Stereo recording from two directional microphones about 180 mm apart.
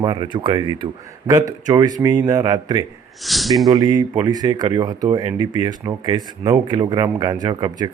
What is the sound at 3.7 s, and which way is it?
Speech, 20° right (ahead or behind).